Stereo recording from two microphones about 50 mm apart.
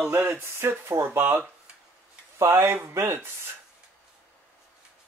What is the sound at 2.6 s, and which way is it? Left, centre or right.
Speech, right.